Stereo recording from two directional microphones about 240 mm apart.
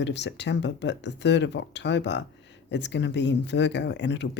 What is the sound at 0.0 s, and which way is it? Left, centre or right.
Speech, left.